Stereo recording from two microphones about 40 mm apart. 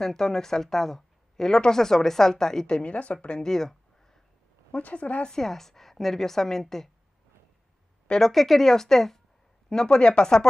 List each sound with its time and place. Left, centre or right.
0.0 s speech: centre
2.6 s speech: left
3.3 s a sound: centre
4.7 s speech: left
5.2 s speech: centre
8.1 s speech: centre